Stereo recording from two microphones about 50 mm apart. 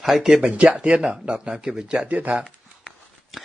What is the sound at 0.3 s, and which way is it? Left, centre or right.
Speech, right.